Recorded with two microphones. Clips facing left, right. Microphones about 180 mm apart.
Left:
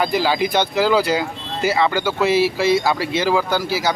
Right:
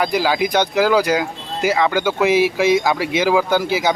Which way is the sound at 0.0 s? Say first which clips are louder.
Right 1 dB; 10° right (ahead or behind).